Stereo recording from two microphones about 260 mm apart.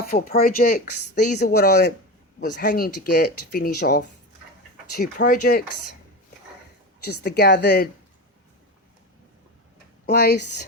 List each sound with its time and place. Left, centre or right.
0.1 s speech: left
7.0 s speech: left
10.1 s speech: left